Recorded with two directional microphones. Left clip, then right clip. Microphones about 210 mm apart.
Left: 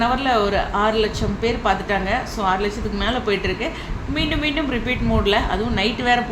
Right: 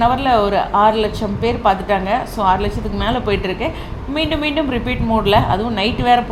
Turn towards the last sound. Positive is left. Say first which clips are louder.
# right 4 dB
turn(degrees=-15)  # may be behind; listen again after turning